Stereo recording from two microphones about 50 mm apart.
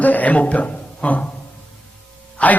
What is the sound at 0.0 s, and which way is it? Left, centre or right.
Speech, left.